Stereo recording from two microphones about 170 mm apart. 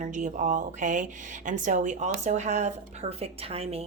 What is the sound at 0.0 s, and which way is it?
Speech, 45° right (ahead or behind).